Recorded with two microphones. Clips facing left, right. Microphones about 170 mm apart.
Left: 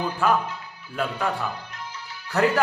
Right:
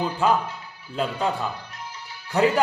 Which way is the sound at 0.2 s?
20° right (ahead or behind).